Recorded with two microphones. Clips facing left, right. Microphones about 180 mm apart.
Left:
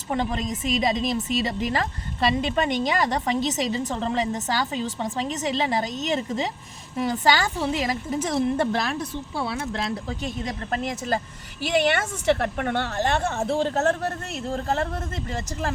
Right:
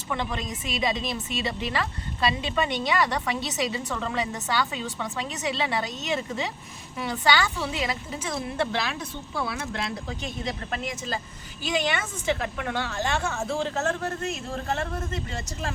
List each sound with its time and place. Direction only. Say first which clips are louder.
0.1 s a woman's voice: left 5 dB; 40° left (ahead or behind)
11.6 s a woman's voice: left 5 dB; 65° left (ahead or behind)
13.2 s a woman's voice: left 4 dB; 35° left (ahead or behind)